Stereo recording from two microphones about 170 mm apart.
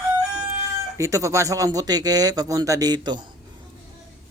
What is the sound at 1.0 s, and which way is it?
Speech, 20° right (ahead or behind).